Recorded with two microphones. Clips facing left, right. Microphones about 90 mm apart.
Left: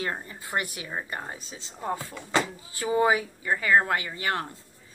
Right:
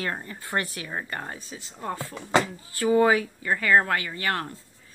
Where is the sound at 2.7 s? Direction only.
20° left (ahead or behind).